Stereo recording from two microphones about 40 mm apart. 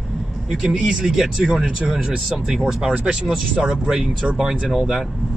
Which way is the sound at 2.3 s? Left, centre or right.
Centre.